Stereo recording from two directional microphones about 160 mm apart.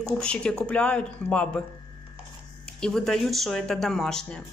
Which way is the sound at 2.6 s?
5° left (ahead or behind).